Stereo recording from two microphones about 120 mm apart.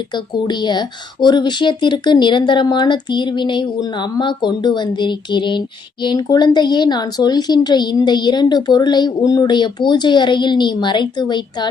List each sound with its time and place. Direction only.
0.1 s a woman's voice: 40° left (ahead or behind)